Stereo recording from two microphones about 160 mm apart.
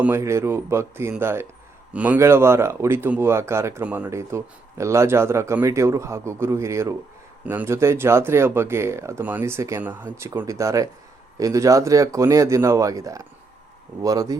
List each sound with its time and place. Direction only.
0.0 s speech: 15° right (ahead or behind)